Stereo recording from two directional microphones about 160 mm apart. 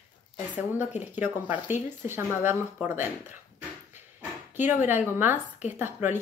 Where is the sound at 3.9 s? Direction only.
10° right (ahead or behind).